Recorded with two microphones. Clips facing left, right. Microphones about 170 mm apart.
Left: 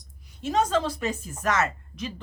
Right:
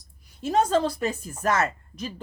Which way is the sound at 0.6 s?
35° right (ahead or behind).